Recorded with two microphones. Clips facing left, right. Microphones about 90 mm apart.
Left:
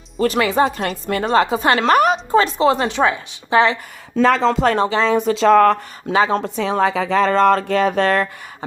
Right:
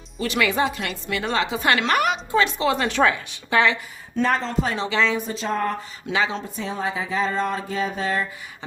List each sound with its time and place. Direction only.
0.2 s a woman's voice: 35° left (ahead or behind)
4.2 s speech: 90° left; by 4.9 s 60° left (ahead or behind)
4.9 s a woman's voice: 40° left (ahead or behind)
5.1 s speech: 80° left
6.1 s a woman's voice: 40° left (ahead or behind)
6.4 s speech: 85° left; by 8.3 s 70° left (ahead or behind)